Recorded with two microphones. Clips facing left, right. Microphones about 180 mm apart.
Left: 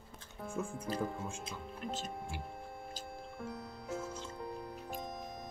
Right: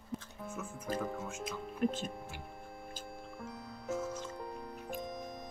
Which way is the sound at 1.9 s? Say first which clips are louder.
Left 1 dB; 50° right (ahead or behind).